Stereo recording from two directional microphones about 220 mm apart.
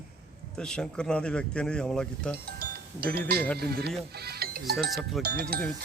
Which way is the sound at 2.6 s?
45° right (ahead or behind).